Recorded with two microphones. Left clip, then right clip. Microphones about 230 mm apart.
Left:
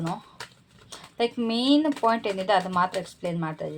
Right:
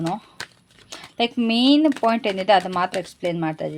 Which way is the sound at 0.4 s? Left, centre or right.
Right.